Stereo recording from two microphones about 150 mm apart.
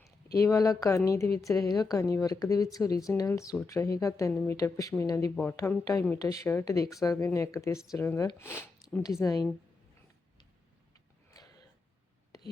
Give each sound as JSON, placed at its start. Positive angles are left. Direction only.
{"t": 0.3, "sound": "speech", "side_deg": 20}